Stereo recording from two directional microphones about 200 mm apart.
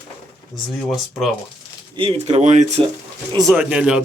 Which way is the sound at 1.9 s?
30° right (ahead or behind).